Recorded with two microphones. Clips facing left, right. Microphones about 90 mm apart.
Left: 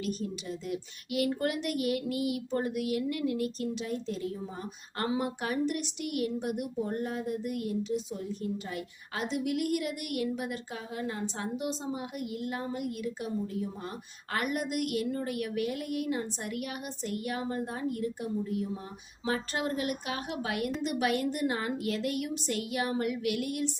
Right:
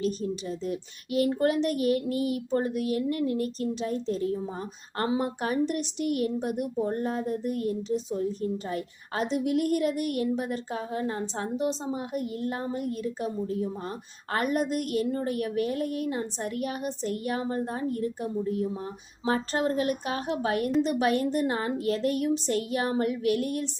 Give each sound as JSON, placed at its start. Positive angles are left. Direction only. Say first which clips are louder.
{"t": 0.0, "sound": "a woman's voice", "louder": "right 5 dB", "side_deg": -35}